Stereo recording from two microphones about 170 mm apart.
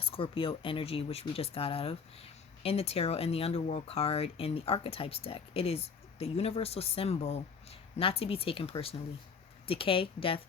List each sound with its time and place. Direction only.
0.0 s speech: 30° left (ahead or behind)